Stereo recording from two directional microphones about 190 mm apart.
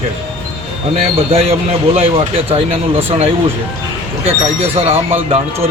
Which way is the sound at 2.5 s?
30° right (ahead or behind).